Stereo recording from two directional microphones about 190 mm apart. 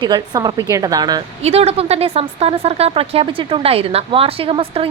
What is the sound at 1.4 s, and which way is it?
Speech, 30° right (ahead or behind).